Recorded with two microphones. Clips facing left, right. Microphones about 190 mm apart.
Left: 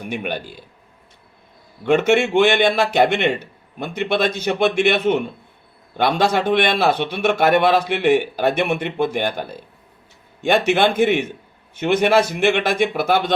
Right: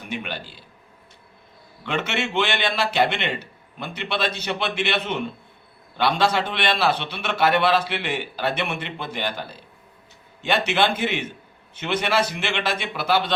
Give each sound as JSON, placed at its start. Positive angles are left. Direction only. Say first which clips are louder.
{"t": 0.1, "sound": "speech", "louder": "left 5 dB", "side_deg": 50}
{"t": 1.8, "sound": "speech", "louder": "left 11 dB", "side_deg": 50}